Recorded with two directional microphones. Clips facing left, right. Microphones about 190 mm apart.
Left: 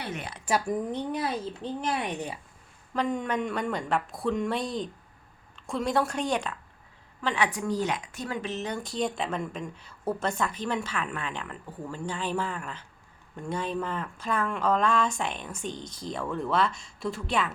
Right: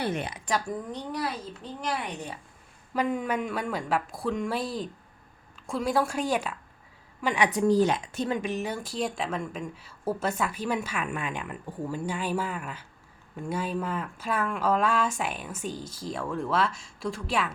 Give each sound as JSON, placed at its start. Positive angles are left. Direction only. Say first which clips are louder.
{"t": 0.4, "sound": "speech", "louder": "left 5 dB", "side_deg": 5}
{"t": 1.1, "sound": "speech", "louder": "left 2 dB", "side_deg": 25}
{"t": 2.9, "sound": "speech", "louder": "right 1 dB", "side_deg": -5}
{"t": 7.7, "sound": "speech", "louder": "right 6 dB", "side_deg": -30}
{"t": 8.4, "sound": "speech", "louder": "right 2 dB", "side_deg": -10}